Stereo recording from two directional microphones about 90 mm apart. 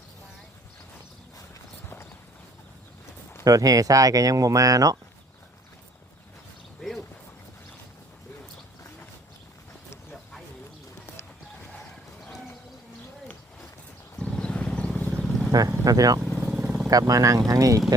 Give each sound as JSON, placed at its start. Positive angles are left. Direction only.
{"t": 3.4, "sound": "speech", "side_deg": -40}
{"t": 14.2, "sound": "vehicle", "side_deg": 10}
{"t": 15.8, "sound": "speech", "side_deg": -45}
{"t": 16.3, "sound": "vehicle", "side_deg": -10}
{"t": 16.9, "sound": "speech", "side_deg": -40}